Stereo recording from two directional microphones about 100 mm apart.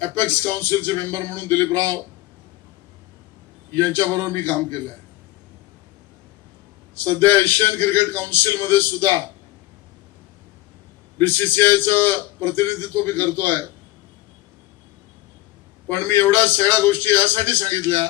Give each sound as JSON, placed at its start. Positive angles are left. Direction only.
{"t": 0.0, "sound": "music", "side_deg": 20}
{"t": 0.8, "sound": "a man's voice", "side_deg": 20}
{"t": 4.3, "sound": "music", "side_deg": 15}
{"t": 6.9, "sound": "a man's voice", "side_deg": 20}
{"t": 11.2, "sound": "a man's voice", "side_deg": 20}
{"t": 15.9, "sound": "a man's voice", "side_deg": 20}